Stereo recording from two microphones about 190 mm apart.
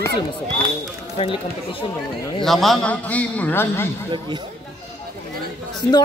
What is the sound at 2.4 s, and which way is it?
A man's voice, centre (ahead or behind).